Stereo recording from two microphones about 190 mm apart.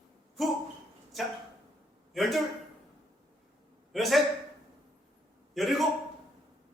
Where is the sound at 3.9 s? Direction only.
Centre (ahead or behind).